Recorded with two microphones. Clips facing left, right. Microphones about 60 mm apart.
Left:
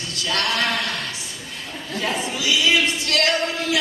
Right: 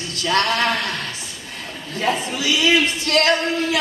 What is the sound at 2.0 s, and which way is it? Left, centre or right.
Speech, right.